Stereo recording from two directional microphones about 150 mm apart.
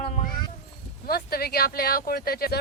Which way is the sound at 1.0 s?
90° left.